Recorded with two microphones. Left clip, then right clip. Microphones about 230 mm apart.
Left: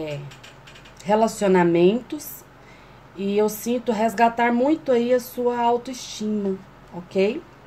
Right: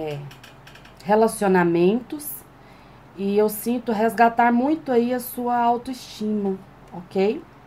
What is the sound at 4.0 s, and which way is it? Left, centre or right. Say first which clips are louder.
Speech: right 3 dB; left.